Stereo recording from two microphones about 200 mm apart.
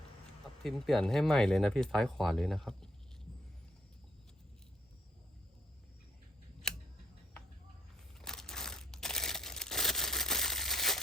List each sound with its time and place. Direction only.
0.6 s speech: centre (ahead or behind)
6.6 s scissors: 5° left (ahead or behind)
8.2 s a sound: centre (ahead or behind)